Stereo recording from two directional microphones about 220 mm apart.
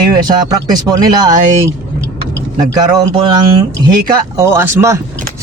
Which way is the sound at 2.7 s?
15° right (ahead or behind).